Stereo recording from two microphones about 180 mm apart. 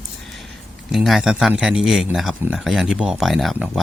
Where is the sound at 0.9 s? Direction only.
Centre (ahead or behind).